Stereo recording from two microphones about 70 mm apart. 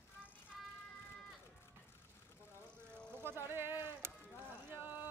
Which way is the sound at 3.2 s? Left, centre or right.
Right.